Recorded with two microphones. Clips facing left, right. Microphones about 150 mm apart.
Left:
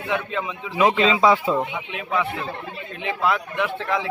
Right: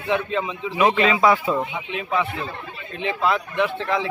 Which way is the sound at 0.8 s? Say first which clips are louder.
Even; 15° left (ahead or behind).